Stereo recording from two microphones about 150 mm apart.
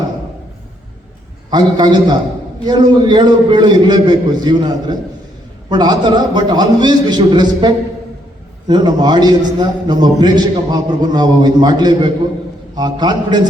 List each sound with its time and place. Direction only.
1.5 s a man's voice: 30° right (ahead or behind)